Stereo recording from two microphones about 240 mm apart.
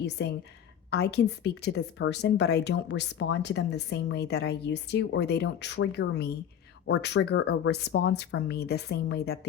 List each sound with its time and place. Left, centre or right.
0.0 s a woman's voice: left